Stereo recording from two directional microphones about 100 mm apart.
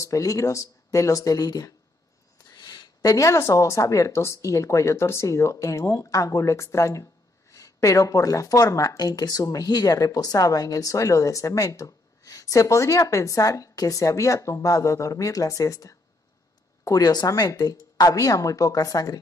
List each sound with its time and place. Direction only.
0.0 s speech: 35° left (ahead or behind)